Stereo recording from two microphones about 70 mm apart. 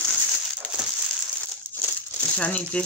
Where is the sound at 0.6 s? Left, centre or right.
Left.